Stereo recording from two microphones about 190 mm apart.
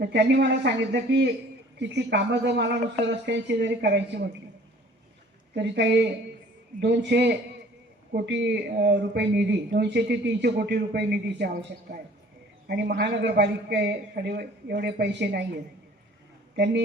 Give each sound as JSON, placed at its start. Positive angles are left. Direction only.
{"t": 0.0, "sound": "speech", "side_deg": -65}
{"t": 5.5, "sound": "speech", "side_deg": -65}